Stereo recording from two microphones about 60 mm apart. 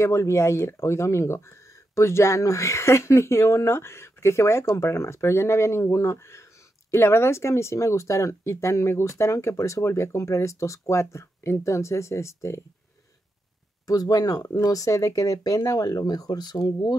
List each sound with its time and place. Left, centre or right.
0.0 s speech: left
13.8 s speech: left